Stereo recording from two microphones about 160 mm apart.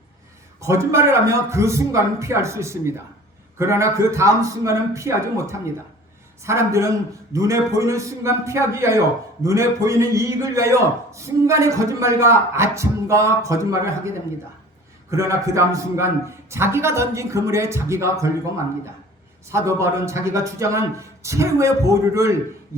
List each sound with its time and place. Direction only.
0.6 s a man's voice: 20° right (ahead or behind)
15.1 s a man's voice: 20° right (ahead or behind)